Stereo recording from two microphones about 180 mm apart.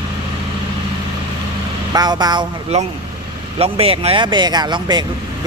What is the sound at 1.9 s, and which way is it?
Speech, 20° right (ahead or behind).